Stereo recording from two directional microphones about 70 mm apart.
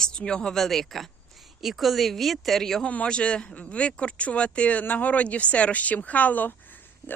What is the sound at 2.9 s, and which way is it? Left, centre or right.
A woman's voice, centre.